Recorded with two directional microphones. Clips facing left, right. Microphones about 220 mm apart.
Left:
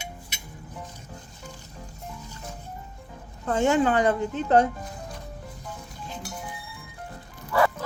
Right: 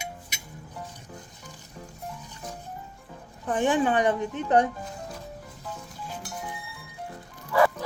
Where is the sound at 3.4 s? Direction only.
15° right (ahead or behind).